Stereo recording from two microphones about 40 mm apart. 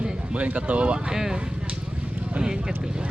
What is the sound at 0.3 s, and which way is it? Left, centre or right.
Speech, right.